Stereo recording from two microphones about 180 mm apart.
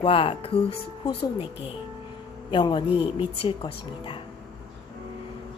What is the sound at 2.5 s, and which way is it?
Speech, 25° left (ahead or behind).